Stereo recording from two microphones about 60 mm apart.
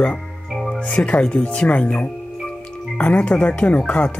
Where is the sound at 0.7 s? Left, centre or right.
Centre.